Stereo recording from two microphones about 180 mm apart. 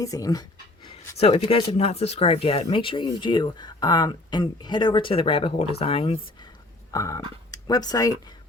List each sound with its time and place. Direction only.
0.0 s speech: 20° left (ahead or behind)
1.2 s speech: 35° left (ahead or behind)
6.9 s speech: 20° left (ahead or behind)